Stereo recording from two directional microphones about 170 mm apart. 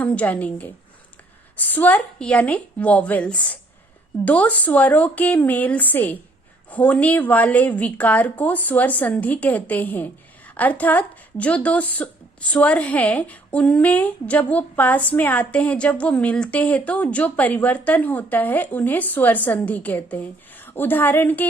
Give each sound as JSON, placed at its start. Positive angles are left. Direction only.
{"t": 0.0, "sound": "a woman's voice", "side_deg": 10}